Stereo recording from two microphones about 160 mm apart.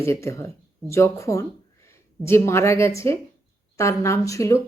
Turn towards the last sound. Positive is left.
turn(degrees=20)  # may be behind; listen again after turning